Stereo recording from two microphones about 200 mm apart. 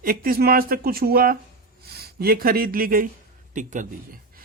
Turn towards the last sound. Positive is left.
turn(degrees=-45)  # may be behind; listen again after turning